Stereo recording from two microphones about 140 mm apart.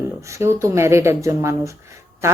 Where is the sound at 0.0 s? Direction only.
20° right (ahead or behind).